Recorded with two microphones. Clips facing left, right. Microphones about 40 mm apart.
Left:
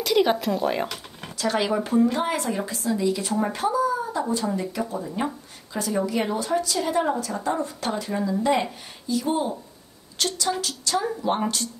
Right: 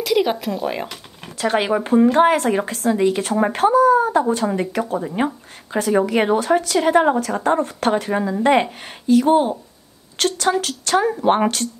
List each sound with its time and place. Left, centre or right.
0.0 s speech: centre
1.4 s speech: right